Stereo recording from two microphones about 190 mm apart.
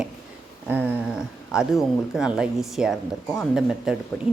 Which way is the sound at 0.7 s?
10° right (ahead or behind).